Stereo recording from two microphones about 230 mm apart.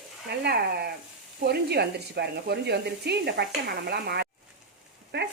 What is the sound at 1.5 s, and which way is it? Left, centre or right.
Speech, right.